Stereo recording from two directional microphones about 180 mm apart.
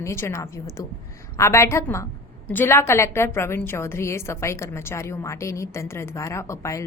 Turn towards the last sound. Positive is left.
turn(degrees=15)  # may be behind; listen again after turning